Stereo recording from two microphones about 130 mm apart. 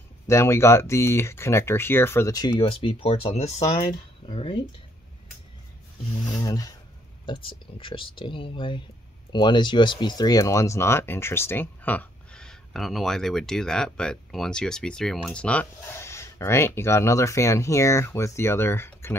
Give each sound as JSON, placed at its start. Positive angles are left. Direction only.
{"t": 0.3, "sound": "speech", "side_deg": 20}
{"t": 2.8, "sound": "speech", "side_deg": 45}
{"t": 3.9, "sound": "speech", "side_deg": 40}
{"t": 6.4, "sound": "speech", "side_deg": 30}
{"t": 7.2, "sound": "speech", "side_deg": 40}